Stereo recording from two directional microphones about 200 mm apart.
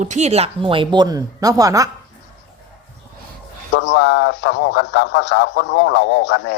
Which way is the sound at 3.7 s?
65° left (ahead or behind).